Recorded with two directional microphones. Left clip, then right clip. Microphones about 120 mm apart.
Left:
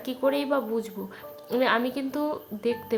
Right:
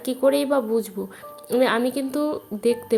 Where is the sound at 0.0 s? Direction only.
30° right (ahead or behind).